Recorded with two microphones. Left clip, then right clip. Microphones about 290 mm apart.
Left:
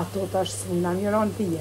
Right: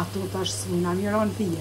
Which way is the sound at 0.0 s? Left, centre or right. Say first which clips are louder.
Left 3 dB; centre.